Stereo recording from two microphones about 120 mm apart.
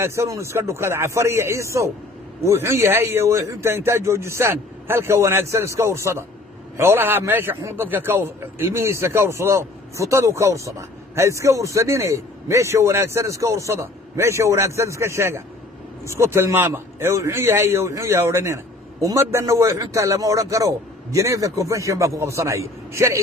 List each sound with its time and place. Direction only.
0.0 s a man's voice: 20° right (ahead or behind)